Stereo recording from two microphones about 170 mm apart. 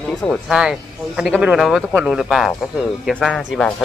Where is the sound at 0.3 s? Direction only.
5° right (ahead or behind).